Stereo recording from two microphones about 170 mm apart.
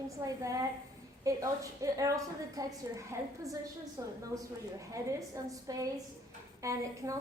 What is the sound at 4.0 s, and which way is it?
A woman's voice, 20° right (ahead or behind).